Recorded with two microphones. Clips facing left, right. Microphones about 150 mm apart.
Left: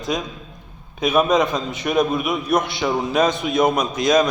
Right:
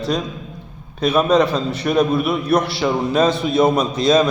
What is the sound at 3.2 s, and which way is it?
Speech, 30° right (ahead or behind).